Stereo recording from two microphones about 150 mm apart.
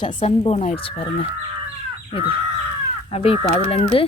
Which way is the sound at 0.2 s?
45° left (ahead or behind).